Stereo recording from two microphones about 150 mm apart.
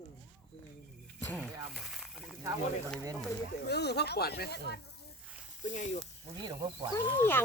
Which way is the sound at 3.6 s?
90° left.